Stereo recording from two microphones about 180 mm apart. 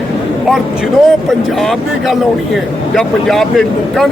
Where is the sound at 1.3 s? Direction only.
Centre (ahead or behind).